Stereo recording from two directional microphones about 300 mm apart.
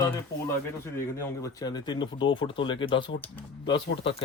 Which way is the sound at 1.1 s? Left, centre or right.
Centre.